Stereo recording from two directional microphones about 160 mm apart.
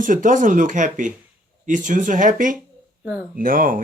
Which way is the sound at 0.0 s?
55° right (ahead or behind).